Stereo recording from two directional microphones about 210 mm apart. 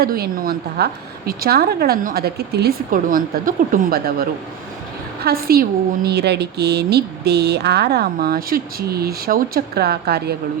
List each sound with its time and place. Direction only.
0.0 s a woman's voice: 45° right (ahead or behind)